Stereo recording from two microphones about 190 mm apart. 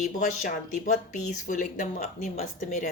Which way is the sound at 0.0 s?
40° left (ahead or behind).